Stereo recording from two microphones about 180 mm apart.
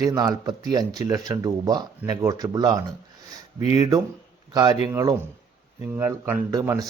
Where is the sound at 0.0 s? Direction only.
20° right (ahead or behind).